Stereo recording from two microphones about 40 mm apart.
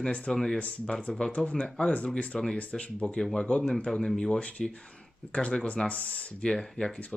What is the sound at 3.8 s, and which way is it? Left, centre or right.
Speech, centre.